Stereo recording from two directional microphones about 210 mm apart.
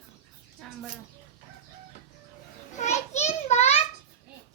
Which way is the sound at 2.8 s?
35° left (ahead or behind).